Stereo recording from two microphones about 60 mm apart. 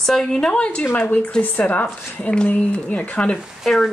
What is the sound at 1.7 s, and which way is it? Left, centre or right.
Speech, left.